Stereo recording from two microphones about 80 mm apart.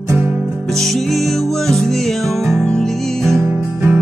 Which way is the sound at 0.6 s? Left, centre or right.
Centre.